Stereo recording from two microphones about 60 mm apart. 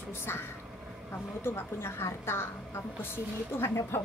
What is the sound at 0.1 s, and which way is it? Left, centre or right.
A woman's voice, left.